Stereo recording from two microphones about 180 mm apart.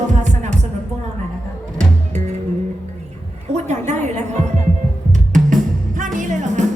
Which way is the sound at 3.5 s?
40° right (ahead or behind).